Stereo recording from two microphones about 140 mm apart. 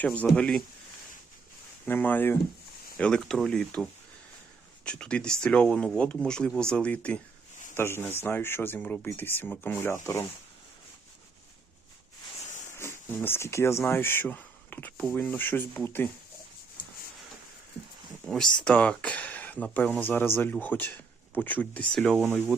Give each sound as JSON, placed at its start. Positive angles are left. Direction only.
{"t": 0.0, "sound": "a man's voice", "side_deg": 10}
{"t": 1.9, "sound": "a man's voice", "side_deg": 15}
{"t": 4.9, "sound": "a man's voice", "side_deg": 5}
{"t": 12.7, "sound": "speech", "side_deg": 20}
{"t": 18.3, "sound": "a man's voice", "side_deg": 5}